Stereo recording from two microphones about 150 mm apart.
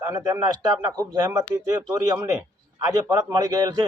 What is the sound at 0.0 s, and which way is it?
A man's voice, 20° right (ahead or behind).